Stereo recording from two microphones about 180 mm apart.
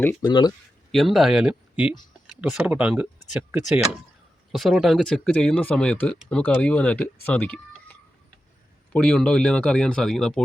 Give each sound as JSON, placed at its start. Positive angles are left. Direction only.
{"t": 0.0, "sound": "speech", "side_deg": 10}
{"t": 0.3, "sound": "speech", "side_deg": 25}
{"t": 0.9, "sound": "speech", "side_deg": 0}